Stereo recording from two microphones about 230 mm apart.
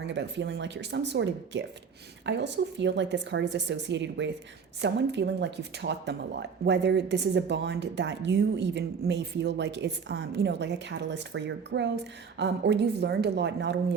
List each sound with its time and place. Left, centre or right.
0.0 s speech: right